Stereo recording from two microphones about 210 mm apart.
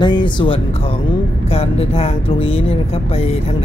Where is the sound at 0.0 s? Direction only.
20° left (ahead or behind).